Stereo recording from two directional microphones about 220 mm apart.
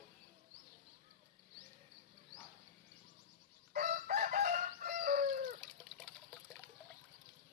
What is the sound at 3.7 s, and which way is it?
Chicken, 40° right (ahead or behind).